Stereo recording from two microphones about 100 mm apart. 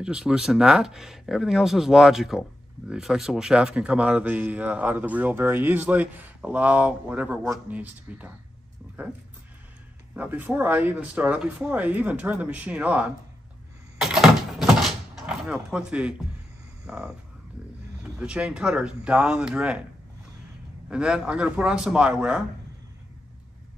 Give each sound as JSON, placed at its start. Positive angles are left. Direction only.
{"t": 0.0, "sound": "a man's voice", "side_deg": -5}
{"t": 10.1, "sound": "a man's voice", "side_deg": -15}
{"t": 13.9, "sound": "door", "side_deg": -5}
{"t": 16.8, "sound": "a sound", "side_deg": -5}
{"t": 18.0, "sound": "a man's voice", "side_deg": -5}
{"t": 20.9, "sound": "a man's voice", "side_deg": -10}